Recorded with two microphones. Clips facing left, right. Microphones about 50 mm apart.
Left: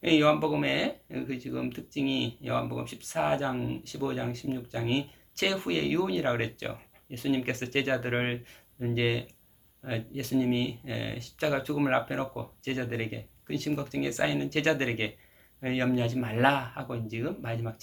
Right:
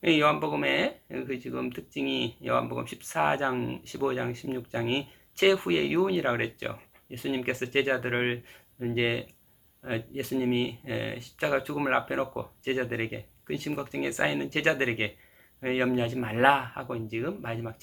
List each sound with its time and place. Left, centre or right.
0.0 s speech: centre